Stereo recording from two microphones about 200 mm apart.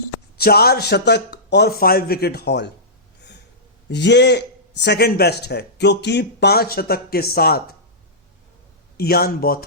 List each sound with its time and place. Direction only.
0.3 s speech: 50° left (ahead or behind)
3.8 s a man's voice: 60° left (ahead or behind)
9.0 s speech: 50° left (ahead or behind)